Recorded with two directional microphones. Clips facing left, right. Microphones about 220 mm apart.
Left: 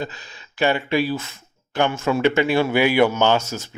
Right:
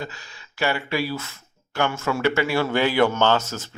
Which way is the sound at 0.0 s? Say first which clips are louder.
Left 4 dB; 20° left (ahead or behind).